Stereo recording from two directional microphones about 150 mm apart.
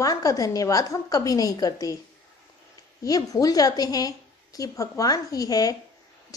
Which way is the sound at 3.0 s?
25° left (ahead or behind).